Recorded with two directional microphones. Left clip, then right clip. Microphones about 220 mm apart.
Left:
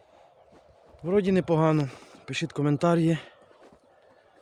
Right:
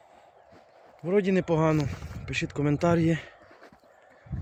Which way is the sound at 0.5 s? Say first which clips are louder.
Right 2 dB; 5° left (ahead or behind).